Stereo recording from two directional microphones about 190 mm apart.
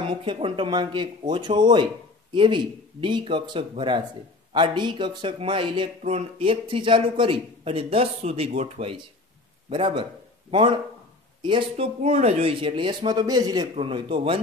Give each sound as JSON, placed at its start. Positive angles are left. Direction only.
{"t": 0.1, "sound": "speech", "side_deg": -25}
{"t": 11.7, "sound": "speech", "side_deg": -35}